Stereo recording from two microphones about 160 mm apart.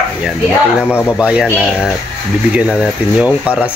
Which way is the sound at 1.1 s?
5° right (ahead or behind).